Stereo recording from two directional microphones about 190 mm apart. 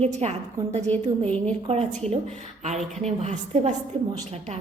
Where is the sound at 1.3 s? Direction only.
5° left (ahead or behind).